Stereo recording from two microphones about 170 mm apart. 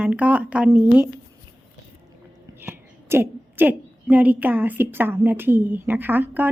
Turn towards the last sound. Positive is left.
turn(degrees=-10)  # may be behind; listen again after turning